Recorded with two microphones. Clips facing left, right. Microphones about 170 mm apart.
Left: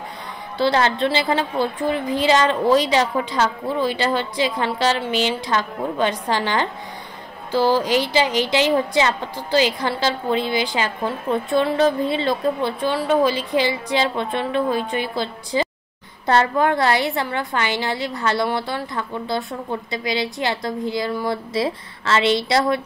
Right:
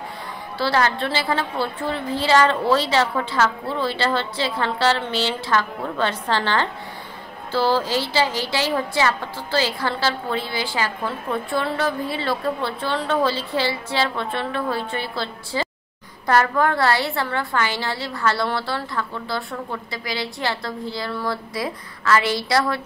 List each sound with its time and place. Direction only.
0.6 s a woman's voice: 20° left (ahead or behind)
21.5 s a woman's voice: 25° left (ahead or behind)